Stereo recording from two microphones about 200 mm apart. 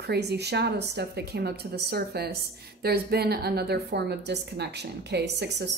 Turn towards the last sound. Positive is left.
turn(degrees=-55)  # may be behind; listen again after turning